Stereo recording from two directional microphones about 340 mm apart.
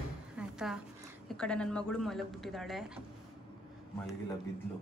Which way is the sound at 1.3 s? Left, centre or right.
Centre.